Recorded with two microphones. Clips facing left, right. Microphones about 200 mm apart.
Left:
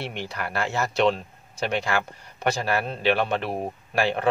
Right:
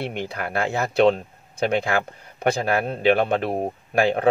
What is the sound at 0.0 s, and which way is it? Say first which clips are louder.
Speech: right 4 dB; 50° right (ahead or behind).